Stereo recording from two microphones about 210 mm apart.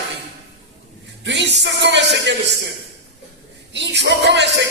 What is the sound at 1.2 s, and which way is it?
Music, 55° right (ahead or behind).